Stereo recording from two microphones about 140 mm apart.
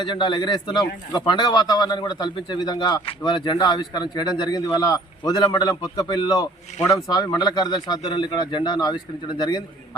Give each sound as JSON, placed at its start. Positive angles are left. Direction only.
{"t": 0.0, "sound": "a man's voice", "side_deg": 35}